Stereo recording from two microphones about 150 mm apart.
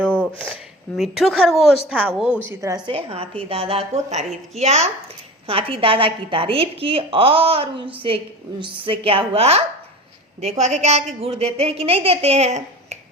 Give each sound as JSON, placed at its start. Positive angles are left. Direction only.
{"t": 0.9, "sound": "speech", "side_deg": 0}
{"t": 2.5, "sound": "a woman's voice", "side_deg": -20}
{"t": 2.8, "sound": "speech", "side_deg": -40}